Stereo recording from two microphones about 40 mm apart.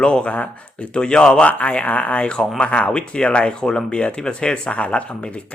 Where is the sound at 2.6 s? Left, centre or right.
Left.